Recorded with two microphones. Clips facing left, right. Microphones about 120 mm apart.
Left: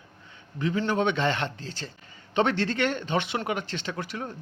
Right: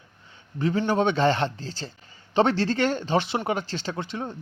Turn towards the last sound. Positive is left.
turn(degrees=-25)  # may be behind; listen again after turning